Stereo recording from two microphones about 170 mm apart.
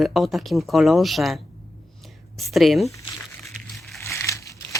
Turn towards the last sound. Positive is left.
turn(degrees=20)  # may be behind; listen again after turning